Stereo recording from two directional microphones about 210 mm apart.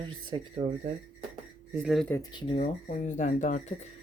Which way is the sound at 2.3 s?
20° left (ahead or behind).